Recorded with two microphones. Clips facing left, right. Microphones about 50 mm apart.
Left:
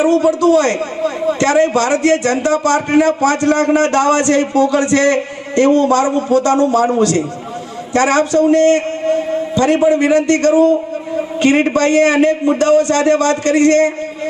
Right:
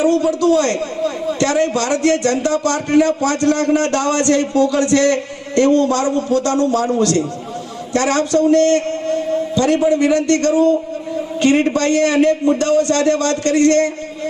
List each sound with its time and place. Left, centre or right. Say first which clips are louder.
0.3 s a man's voice: left 3 dB; left